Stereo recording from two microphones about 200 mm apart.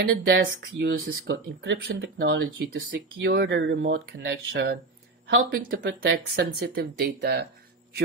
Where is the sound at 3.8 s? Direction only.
50° right (ahead or behind).